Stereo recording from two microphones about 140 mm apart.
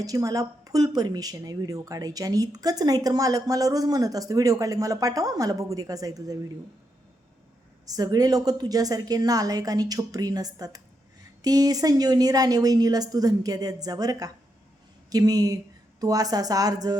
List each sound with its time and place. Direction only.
0.0 s speech: 25° right (ahead or behind)
7.9 s a woman's voice: 25° right (ahead or behind)